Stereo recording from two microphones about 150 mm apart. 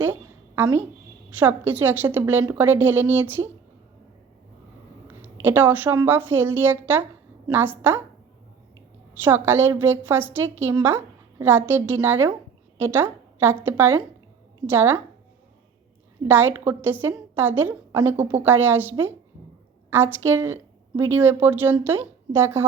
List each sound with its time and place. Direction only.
0.0 s a sound: 15° right (ahead or behind)
1.4 s a woman's voice: 10° right (ahead or behind)
5.0 s a woman's voice: 15° right (ahead or behind)
9.2 s a woman's voice: 15° right (ahead or behind)
16.2 s a woman's voice: 15° right (ahead or behind)